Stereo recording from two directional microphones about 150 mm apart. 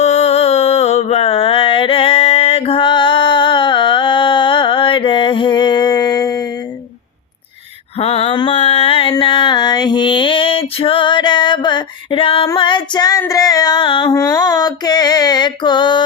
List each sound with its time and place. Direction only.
0.0 s mantra: 45° left (ahead or behind); by 6.5 s 25° left (ahead or behind)
7.9 s a sound: 40° left (ahead or behind)
12.5 s female singing: 30° left (ahead or behind)
14.1 s mantra: 25° left (ahead or behind)